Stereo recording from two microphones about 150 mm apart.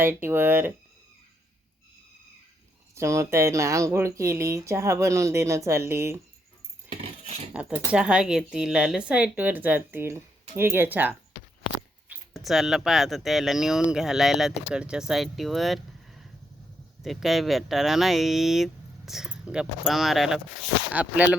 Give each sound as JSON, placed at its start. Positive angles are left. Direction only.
{"t": 0.0, "sound": "speech", "side_deg": -15}
{"t": 2.9, "sound": "speech", "side_deg": -20}
{"t": 7.5, "sound": "speech", "side_deg": -10}